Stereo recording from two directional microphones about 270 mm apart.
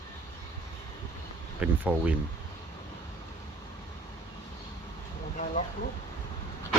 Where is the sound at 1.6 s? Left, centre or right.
Centre.